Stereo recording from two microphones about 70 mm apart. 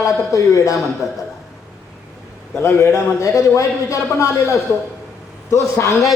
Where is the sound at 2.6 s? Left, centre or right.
Left.